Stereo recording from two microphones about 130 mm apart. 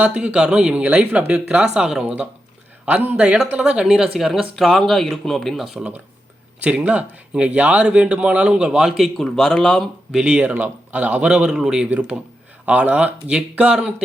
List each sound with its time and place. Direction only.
0.0 s speech: 10° right (ahead or behind)